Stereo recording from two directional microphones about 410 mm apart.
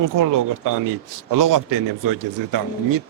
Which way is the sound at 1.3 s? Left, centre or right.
Right.